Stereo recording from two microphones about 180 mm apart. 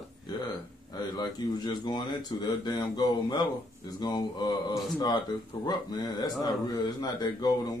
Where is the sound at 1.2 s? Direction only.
25° left (ahead or behind).